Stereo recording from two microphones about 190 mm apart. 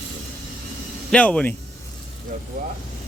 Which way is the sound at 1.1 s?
5° left (ahead or behind).